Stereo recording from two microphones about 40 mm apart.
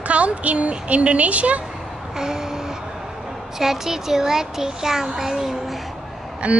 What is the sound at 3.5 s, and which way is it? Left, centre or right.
A child's voice, centre.